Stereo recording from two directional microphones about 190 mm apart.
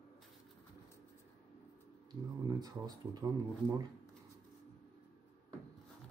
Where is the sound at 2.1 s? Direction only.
20° right (ahead or behind).